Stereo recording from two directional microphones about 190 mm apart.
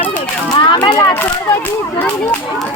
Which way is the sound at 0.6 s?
20° left (ahead or behind).